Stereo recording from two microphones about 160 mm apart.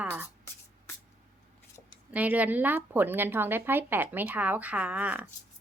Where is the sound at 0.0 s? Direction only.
10° right (ahead or behind).